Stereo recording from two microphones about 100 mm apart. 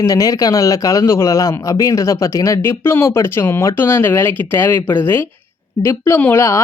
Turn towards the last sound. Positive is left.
turn(degrees=25)  # may be behind; listen again after turning